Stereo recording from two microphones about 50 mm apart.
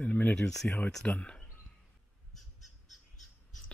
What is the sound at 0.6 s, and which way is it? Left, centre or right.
Speech, left.